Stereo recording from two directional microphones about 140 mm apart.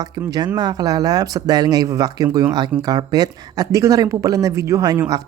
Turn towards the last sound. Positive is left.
turn(degrees=-25)  # may be behind; listen again after turning